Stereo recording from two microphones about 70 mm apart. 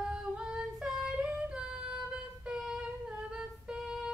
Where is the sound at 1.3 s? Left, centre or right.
Centre.